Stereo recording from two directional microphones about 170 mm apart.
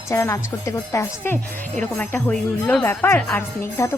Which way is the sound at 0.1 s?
20° left (ahead or behind).